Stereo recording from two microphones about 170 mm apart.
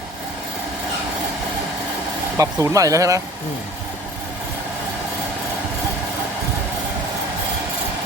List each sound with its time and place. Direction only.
2.4 s speech: 20° right (ahead or behind)